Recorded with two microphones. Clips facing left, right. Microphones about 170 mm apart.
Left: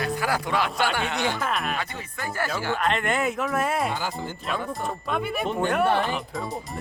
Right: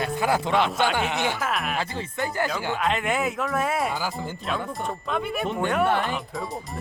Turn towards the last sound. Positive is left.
turn(degrees=0)  # may be behind; listen again after turning